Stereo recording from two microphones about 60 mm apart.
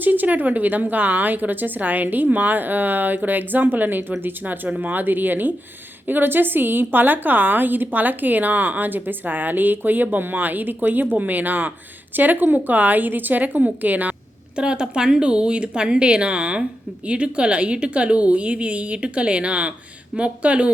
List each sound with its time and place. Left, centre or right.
0.0 s a woman's voice: right